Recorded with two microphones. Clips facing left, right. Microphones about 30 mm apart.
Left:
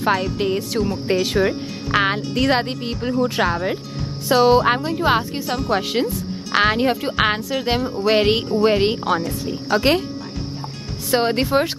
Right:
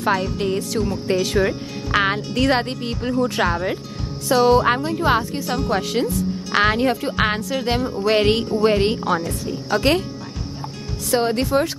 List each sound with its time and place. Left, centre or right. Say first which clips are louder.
0.0 s speech: left 1 dB; centre
4.3 s speech: left 1 dB; centre
5.8 s speech: even; centre
11.1 s speech: left 1 dB; left